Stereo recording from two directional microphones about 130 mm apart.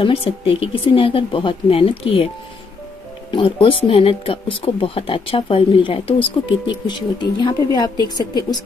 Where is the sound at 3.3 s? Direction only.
45° left (ahead or behind).